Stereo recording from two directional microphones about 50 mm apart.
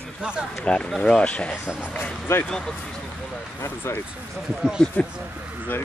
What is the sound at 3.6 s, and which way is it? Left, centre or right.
Speech, left.